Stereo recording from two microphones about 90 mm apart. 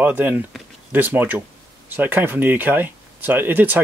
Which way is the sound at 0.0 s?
20° right (ahead or behind).